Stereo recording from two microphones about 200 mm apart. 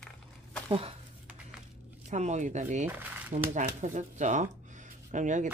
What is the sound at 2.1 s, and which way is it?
Speech, 35° right (ahead or behind).